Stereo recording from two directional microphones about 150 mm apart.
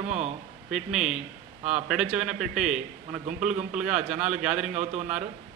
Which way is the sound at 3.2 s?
50° right (ahead or behind).